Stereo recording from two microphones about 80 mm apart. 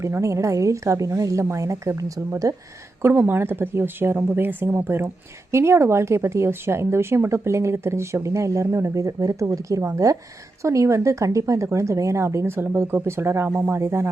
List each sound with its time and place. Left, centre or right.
0.0 s speech: right
3.0 s speech: right